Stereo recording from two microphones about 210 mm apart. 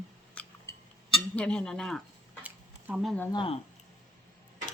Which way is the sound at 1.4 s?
5° left (ahead or behind).